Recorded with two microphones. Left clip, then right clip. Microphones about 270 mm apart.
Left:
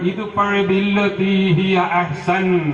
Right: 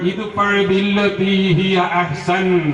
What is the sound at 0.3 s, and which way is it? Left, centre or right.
A man's voice, centre.